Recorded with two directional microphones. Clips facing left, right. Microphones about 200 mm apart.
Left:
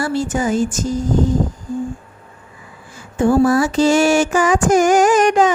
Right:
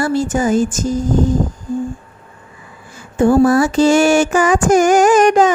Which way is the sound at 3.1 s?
50° right (ahead or behind).